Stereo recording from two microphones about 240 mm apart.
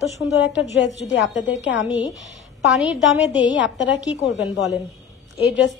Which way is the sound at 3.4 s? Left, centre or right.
Left.